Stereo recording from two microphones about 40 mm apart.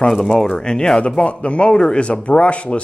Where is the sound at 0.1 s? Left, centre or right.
Centre.